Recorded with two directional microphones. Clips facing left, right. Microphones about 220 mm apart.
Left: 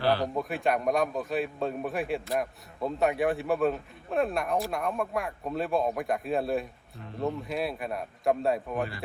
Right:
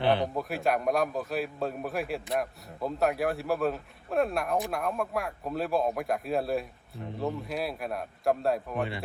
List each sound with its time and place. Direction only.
0.0 s speech: 20° right (ahead or behind)
0.3 s a man's voice: centre (ahead or behind)